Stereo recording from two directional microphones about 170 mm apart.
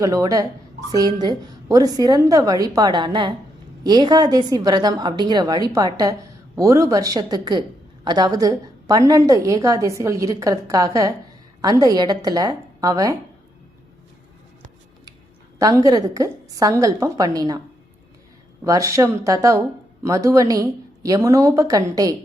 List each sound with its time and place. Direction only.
0.0 s speech: 20° right (ahead or behind)
15.5 s speech: 20° right (ahead or behind)
18.6 s speech: 20° right (ahead or behind)